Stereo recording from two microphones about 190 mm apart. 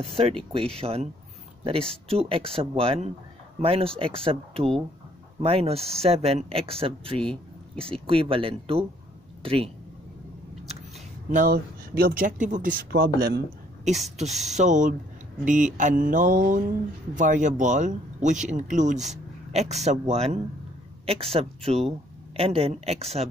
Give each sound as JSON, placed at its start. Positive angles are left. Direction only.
{"t": 0.1, "sound": "speech", "side_deg": -30}
{"t": 2.0, "sound": "speech", "side_deg": -30}
{"t": 11.2, "sound": "speech", "side_deg": -45}
{"t": 14.1, "sound": "a man's voice", "side_deg": -35}